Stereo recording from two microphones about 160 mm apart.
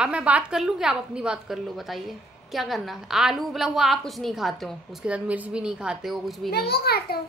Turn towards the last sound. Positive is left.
turn(degrees=75)  # may be behind; listen again after turning